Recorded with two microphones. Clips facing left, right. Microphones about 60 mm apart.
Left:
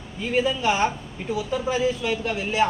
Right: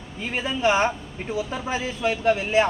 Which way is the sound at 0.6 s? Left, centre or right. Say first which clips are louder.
Right 1 dB; right.